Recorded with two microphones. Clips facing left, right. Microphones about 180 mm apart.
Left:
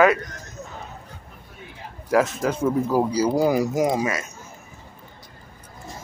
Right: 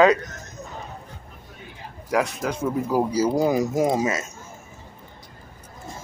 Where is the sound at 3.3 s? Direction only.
20° right (ahead or behind).